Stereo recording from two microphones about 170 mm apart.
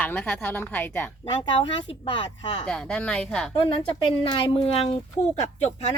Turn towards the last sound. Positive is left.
turn(degrees=35)  # may be behind; listen again after turning